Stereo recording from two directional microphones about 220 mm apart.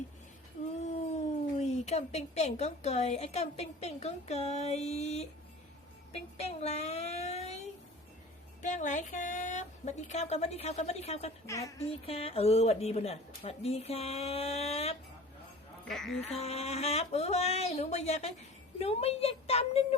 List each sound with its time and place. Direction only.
0.8 s a woman's voice: 30° left (ahead or behind)
8.6 s speech: 35° left (ahead or behind)
11.4 s a woman's voice: 15° left (ahead or behind)
11.8 s a woman's voice: 25° left (ahead or behind)
15.9 s speech: centre (ahead or behind)
16.4 s a woman's voice: 30° left (ahead or behind)